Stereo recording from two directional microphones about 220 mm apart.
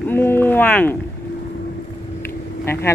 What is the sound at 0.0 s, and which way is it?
Speech, 10° left (ahead or behind).